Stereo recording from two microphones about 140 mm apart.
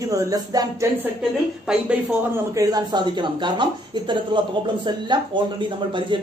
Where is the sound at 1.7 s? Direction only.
5° right (ahead or behind).